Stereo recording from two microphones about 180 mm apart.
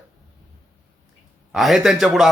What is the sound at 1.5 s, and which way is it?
Speech, centre (ahead or behind).